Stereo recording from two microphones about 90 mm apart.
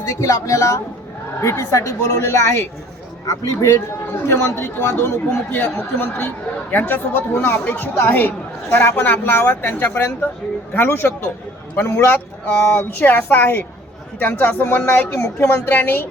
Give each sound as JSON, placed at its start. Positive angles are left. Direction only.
{"t": 0.1, "sound": "a woman's voice", "side_deg": 35}